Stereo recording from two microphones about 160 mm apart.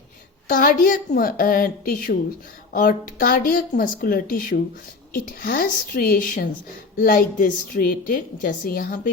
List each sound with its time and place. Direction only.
0.5 s a woman's voice: 60° left (ahead or behind)